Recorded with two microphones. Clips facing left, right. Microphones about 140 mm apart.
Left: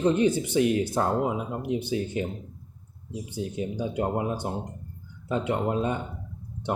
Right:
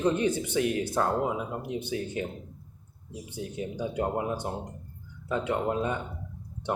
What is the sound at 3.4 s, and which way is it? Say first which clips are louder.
Speech: left 3 dB; 20° left (ahead or behind).